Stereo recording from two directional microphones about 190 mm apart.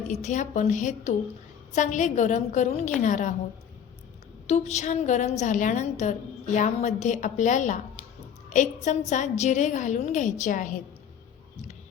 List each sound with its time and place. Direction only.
0.1 s a woman's voice: 40° left (ahead or behind)
4.4 s a woman's voice: 35° left (ahead or behind)